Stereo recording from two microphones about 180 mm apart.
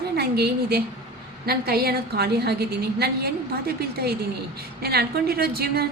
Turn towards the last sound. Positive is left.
turn(degrees=-60)  # may be behind; listen again after turning